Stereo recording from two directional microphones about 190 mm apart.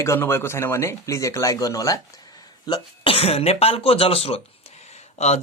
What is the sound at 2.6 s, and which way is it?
Speech, 30° left (ahead or behind).